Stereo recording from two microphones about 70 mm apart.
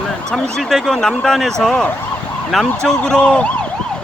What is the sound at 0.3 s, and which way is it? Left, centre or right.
Speech, centre.